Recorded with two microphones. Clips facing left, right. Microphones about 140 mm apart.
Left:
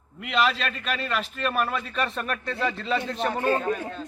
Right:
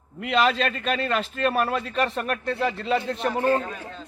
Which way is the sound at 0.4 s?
35° right (ahead or behind).